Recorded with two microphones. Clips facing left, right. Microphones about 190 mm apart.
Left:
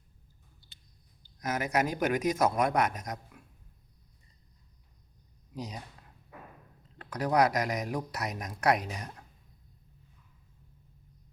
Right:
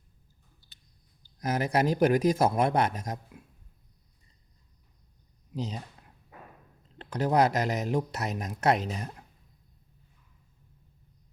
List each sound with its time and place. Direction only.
1.4 s speech: 30° right (ahead or behind)
5.5 s speech: 25° right (ahead or behind)
7.0 s speech: 25° right (ahead or behind)